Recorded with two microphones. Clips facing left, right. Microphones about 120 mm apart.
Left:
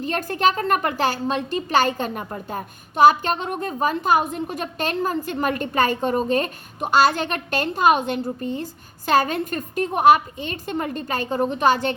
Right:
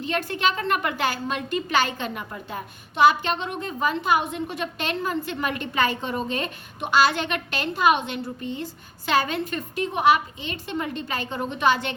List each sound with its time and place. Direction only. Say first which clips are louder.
0.0 s a woman's voice: left 4 dB; 45° left (ahead or behind)